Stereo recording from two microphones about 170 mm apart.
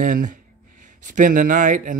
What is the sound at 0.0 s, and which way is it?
Speech, 55° right (ahead or behind).